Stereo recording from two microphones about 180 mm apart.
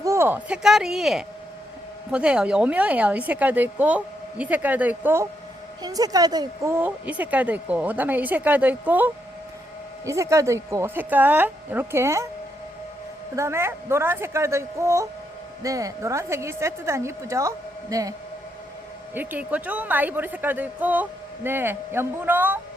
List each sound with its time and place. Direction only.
0.0 s a woman's voice: 15° right (ahead or behind)
13.3 s a woman's voice: 15° right (ahead or behind)
19.1 s a woman's voice: 10° right (ahead or behind)